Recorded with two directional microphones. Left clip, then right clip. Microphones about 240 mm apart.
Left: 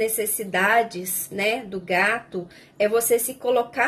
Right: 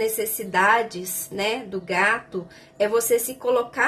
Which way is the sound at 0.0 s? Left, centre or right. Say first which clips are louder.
Even; centre.